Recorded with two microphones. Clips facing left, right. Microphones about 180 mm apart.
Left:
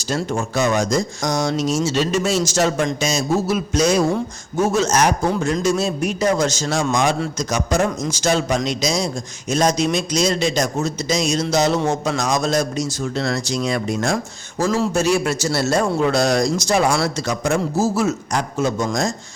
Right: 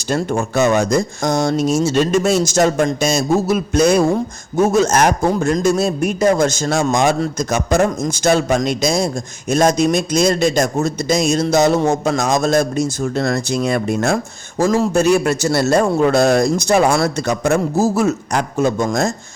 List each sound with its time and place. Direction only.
0.1 s a man's voice: 55° right (ahead or behind)